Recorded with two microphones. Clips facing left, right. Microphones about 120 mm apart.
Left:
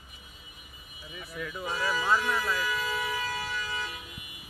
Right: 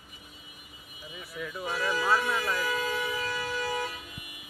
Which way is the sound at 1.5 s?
5° right (ahead or behind).